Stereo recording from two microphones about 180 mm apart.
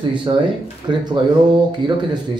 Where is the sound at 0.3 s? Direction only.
25° right (ahead or behind).